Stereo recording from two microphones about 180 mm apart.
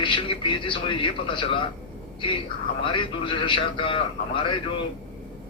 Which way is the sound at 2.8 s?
25° left (ahead or behind).